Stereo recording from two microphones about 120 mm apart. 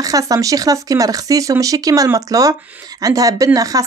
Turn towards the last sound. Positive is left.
turn(degrees=-30)  # may be behind; listen again after turning